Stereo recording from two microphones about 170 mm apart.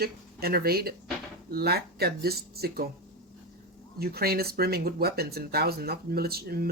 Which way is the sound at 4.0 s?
65° right (ahead or behind).